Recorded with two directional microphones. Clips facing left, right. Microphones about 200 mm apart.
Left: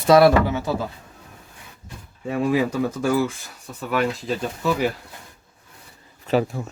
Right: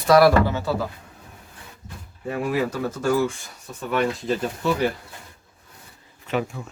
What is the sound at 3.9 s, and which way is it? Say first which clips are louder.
Speech: even; centre (ahead or behind).